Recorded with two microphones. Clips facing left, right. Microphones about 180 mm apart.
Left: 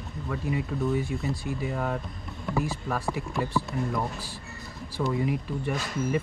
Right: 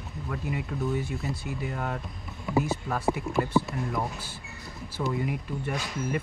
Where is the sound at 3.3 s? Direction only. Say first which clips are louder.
Right 1 dB; centre (ahead or behind).